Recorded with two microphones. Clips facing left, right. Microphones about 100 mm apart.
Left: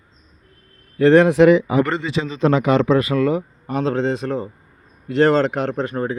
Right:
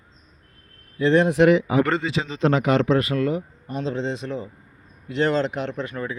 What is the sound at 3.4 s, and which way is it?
A man's voice, 75° left (ahead or behind).